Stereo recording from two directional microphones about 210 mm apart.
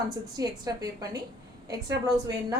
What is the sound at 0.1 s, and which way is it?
A woman's voice, 20° right (ahead or behind).